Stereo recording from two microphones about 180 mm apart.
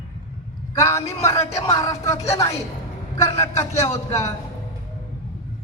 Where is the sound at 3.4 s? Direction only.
15° left (ahead or behind).